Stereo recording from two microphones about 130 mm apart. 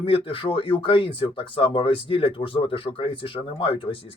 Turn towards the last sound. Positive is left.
turn(degrees=40)  # may be behind; listen again after turning